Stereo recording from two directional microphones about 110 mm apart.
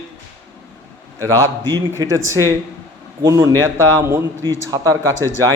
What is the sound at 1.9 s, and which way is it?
A man's voice, 30° right (ahead or behind).